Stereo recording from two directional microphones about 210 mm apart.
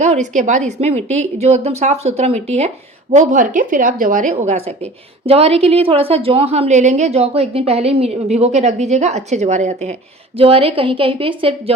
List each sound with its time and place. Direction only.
0.0 s a woman's voice: 35° right (ahead or behind)